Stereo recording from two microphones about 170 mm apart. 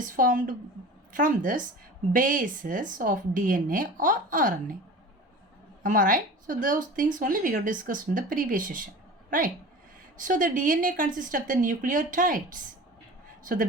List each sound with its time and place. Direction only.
0.0 s a woman's voice: 50° right (ahead or behind)
5.8 s a woman's voice: 50° right (ahead or behind)
10.2 s a woman's voice: 50° right (ahead or behind)